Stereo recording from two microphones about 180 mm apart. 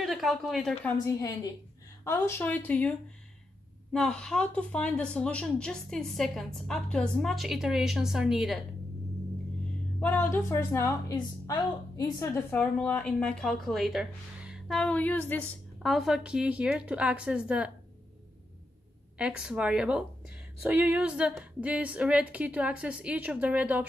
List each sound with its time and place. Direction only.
0.0 s a woman's voice: centre (ahead or behind)
0.8 s a woman's voice: 15° left (ahead or behind); by 8.6 s centre (ahead or behind)
9.9 s a woman's voice: 10° left (ahead or behind)
19.1 s a woman's voice: 5° right (ahead or behind)